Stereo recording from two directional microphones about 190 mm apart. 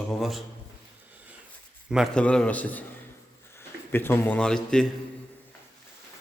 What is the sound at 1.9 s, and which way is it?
Speech, centre (ahead or behind).